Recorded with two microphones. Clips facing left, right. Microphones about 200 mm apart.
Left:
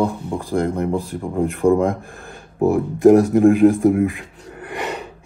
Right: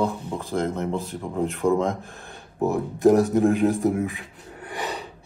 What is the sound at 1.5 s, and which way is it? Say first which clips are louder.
Speech: left 6 dB; centre (ahead or behind).